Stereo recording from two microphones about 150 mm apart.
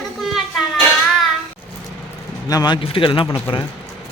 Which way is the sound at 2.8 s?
35° left (ahead or behind).